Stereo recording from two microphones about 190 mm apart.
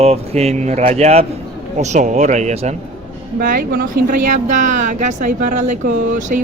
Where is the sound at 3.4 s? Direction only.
50° right (ahead or behind).